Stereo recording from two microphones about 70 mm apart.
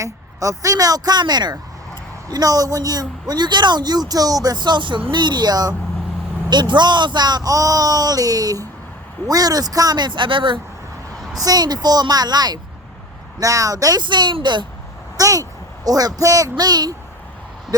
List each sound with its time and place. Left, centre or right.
0.0 s speech: right
2.3 s speech: right
6.5 s speech: right
7.5 s speech: right
11.3 s speech: right
13.4 s speech: right
15.2 s speech: right